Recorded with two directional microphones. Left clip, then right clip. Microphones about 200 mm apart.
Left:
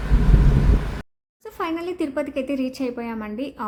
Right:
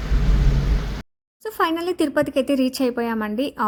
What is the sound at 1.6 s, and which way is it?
A woman's voice, 40° right (ahead or behind).